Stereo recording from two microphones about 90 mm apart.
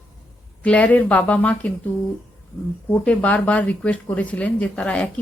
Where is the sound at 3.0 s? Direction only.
15° left (ahead or behind).